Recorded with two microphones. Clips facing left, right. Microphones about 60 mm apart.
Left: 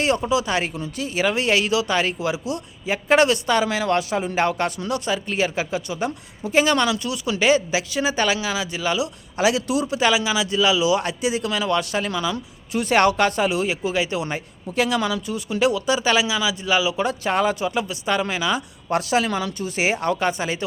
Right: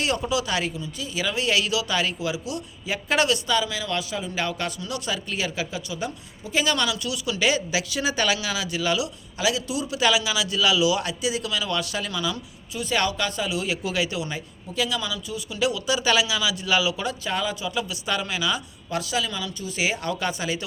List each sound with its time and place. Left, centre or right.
0.3 s speech: left
0.8 s speech: left
9.4 s speech: left
10.0 s speech: left
11.2 s speech: left
12.7 s speech: left
13.7 s speech: left
14.2 s speech: left
17.0 s speech: left
18.9 s speech: left